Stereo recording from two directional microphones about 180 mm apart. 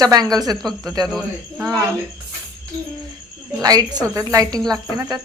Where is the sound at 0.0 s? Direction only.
20° right (ahead or behind).